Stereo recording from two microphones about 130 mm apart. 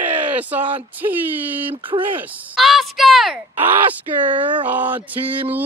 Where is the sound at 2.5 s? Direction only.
Centre (ahead or behind).